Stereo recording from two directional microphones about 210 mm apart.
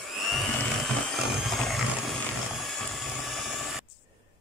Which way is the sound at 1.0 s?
Centre (ahead or behind).